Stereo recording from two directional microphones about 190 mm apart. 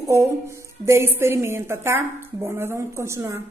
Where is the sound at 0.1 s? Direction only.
15° right (ahead or behind).